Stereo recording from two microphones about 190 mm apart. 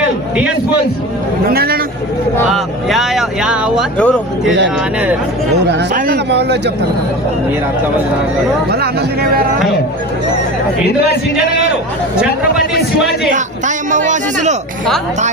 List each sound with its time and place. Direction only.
0.0 s a sound: 5° right (ahead or behind)
1.5 s a man's voice: 55° right (ahead or behind)
2.5 s speech: centre (ahead or behind)
3.9 s speech: 5° left (ahead or behind)
5.9 s speech: 60° right (ahead or behind)
13.3 s speech: 40° right (ahead or behind)